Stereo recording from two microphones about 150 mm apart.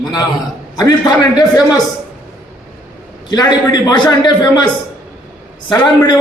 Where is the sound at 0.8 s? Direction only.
25° left (ahead or behind).